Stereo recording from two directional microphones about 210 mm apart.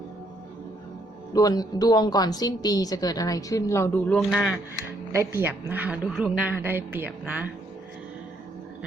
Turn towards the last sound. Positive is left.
turn(degrees=-5)  # may be behind; listen again after turning